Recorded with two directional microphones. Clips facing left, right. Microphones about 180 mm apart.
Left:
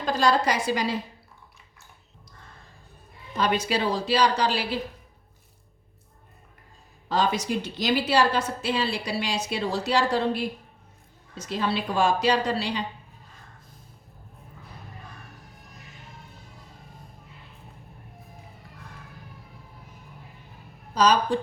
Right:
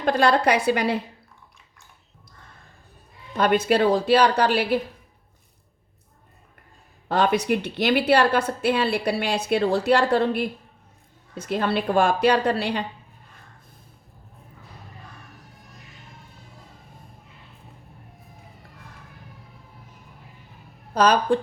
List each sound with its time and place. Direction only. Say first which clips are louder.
0.0 s a woman's voice: right 3 dB; 60° right (ahead or behind)
3.3 s a woman's voice: right 6 dB; 55° right (ahead or behind)
7.1 s a woman's voice: right 4 dB; 60° right (ahead or behind)
20.9 s a woman's voice: right 3 dB; 55° right (ahead or behind)